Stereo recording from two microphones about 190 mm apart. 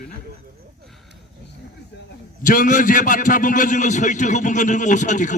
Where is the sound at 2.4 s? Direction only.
45° left (ahead or behind).